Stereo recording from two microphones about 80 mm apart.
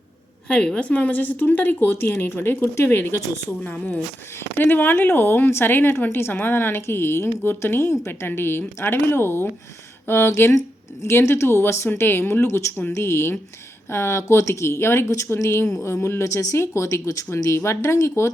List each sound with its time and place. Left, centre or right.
0.4 s a woman's voice: centre; by 3.1 s left
3.6 s a woman's voice: centre; by 18.1 s left